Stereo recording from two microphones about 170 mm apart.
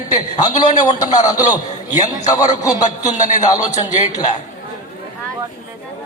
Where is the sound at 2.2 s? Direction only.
20° left (ahead or behind).